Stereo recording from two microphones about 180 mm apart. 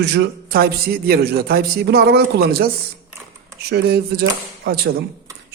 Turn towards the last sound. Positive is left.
turn(degrees=-65)  # may be behind; listen again after turning